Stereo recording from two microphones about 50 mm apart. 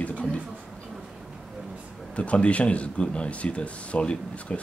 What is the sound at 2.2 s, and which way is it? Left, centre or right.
Speech, left.